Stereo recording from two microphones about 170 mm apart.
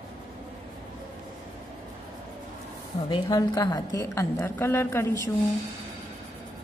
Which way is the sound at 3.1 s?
20° left (ahead or behind).